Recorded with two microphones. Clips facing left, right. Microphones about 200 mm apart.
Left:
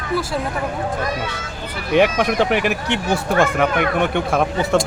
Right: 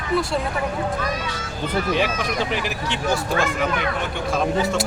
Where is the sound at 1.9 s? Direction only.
60° left (ahead or behind).